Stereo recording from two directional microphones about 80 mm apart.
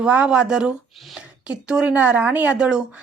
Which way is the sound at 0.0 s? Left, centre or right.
Centre.